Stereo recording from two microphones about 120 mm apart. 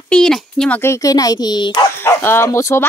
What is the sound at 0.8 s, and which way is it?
Speech, 25° left (ahead or behind).